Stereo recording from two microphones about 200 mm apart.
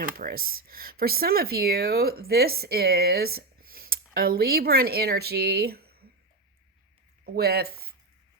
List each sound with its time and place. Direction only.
0.0 s speech: 45° right (ahead or behind)
7.3 s speech: 50° right (ahead or behind)